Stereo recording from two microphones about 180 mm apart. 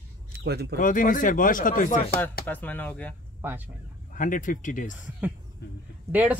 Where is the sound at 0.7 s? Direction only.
45° left (ahead or behind).